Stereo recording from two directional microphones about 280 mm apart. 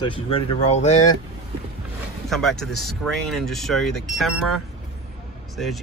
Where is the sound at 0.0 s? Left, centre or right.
Centre.